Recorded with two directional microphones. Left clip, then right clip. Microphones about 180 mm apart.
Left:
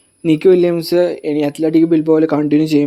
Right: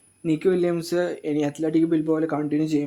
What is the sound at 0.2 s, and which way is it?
Speech, 45° left (ahead or behind).